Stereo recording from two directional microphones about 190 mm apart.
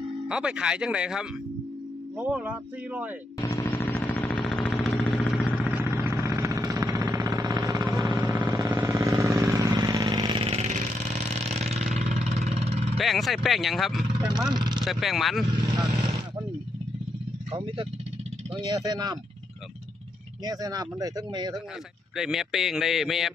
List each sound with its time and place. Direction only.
0.3 s speech: 5° right (ahead or behind)
3.3 s a sound: 20° left (ahead or behind); by 8.1 s 20° right (ahead or behind)
8.1 s vehicle: 10° right (ahead or behind); by 12.9 s 35° right (ahead or behind)
12.9 s speech: centre (ahead or behind)
14.5 s vehicle: 25° right (ahead or behind)
14.9 s speech: centre (ahead or behind)
15.5 s vehicle: 25° right (ahead or behind)
17.5 s speech: 25° right (ahead or behind)
20.4 s speech: 20° right (ahead or behind)
22.1 s speech: centre (ahead or behind)